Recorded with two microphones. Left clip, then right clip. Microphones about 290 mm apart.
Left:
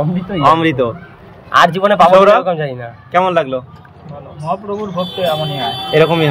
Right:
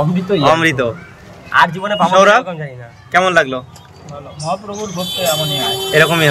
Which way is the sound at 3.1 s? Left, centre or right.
Centre.